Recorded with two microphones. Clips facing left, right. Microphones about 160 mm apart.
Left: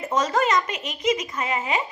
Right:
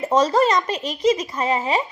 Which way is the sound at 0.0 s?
30° right (ahead or behind).